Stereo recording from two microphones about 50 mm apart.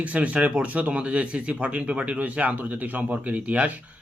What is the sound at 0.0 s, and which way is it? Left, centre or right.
Speech, right.